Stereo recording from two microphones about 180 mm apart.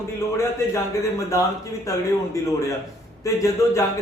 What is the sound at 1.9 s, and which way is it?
Speech, 15° left (ahead or behind).